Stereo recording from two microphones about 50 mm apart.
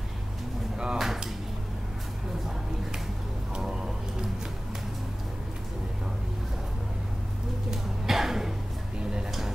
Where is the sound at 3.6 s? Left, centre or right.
Centre.